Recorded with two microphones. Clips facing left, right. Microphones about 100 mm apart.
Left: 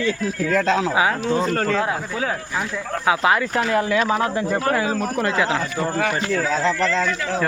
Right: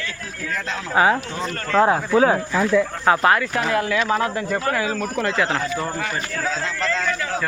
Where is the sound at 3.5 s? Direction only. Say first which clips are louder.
Left 1 dB; 25° left (ahead or behind).